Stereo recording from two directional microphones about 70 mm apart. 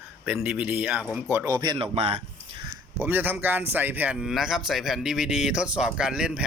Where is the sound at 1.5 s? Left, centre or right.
Right.